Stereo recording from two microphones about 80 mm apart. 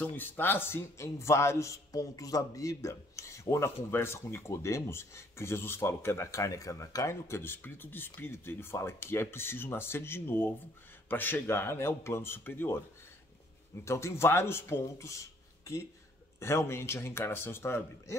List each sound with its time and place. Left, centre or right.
0.1 s a man's voice: left
13.8 s a man's voice: left